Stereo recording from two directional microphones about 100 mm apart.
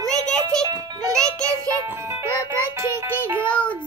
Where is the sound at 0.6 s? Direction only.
35° right (ahead or behind).